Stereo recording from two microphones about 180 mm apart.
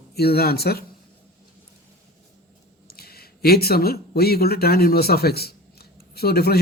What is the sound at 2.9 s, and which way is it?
Speech, 60° left (ahead or behind).